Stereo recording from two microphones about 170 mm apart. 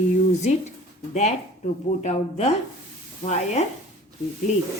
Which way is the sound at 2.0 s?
40° left (ahead or behind).